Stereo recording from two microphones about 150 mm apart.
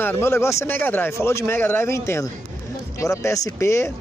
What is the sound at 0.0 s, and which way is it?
Speech, 15° left (ahead or behind).